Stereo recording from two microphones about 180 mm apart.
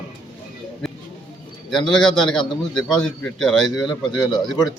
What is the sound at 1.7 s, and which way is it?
A man's voice, 5° left (ahead or behind).